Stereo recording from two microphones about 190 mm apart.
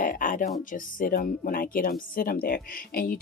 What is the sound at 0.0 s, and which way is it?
Music, 45° left (ahead or behind).